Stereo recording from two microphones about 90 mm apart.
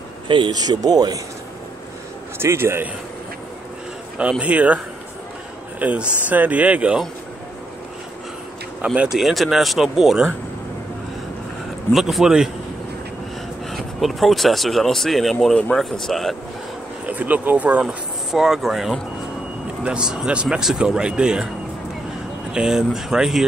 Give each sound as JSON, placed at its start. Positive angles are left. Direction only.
{"t": 0.5, "sound": "speech", "side_deg": -45}
{"t": 2.3, "sound": "a man's voice", "side_deg": -30}
{"t": 4.2, "sound": "speech", "side_deg": -15}
{"t": 5.8, "sound": "speech", "side_deg": -15}
{"t": 8.8, "sound": "speech", "side_deg": -15}
{"t": 9.1, "sound": "speech", "side_deg": 0}
{"t": 11.9, "sound": "speech", "side_deg": 0}
{"t": 13.7, "sound": "speech", "side_deg": 0}
{"t": 17.0, "sound": "speech", "side_deg": -20}
{"t": 18.3, "sound": "speech", "side_deg": -5}
{"t": 22.5, "sound": "speech", "side_deg": -5}